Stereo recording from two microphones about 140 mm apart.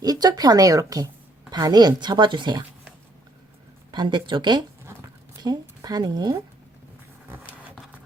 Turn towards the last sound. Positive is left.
turn(degrees=-30)  # may be behind; listen again after turning